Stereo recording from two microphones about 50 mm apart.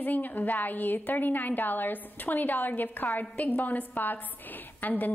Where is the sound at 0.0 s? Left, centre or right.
Left.